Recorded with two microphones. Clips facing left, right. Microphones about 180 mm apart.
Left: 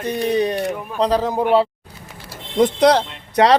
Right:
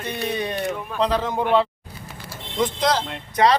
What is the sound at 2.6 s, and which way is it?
Speech, 65° left (ahead or behind).